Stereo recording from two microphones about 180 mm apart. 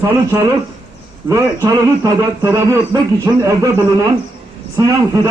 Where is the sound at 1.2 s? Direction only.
15° right (ahead or behind).